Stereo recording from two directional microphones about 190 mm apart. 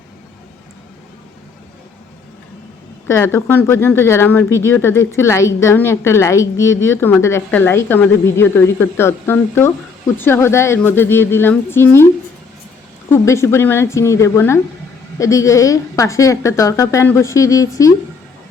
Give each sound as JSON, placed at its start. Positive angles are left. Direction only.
{"t": 3.1, "sound": "speech", "side_deg": 15}
{"t": 13.1, "sound": "speech", "side_deg": 15}